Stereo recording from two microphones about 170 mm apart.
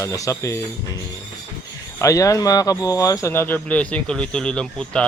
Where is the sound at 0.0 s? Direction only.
15° left (ahead or behind).